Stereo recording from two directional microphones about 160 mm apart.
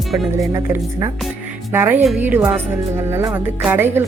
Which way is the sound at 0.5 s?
15° right (ahead or behind).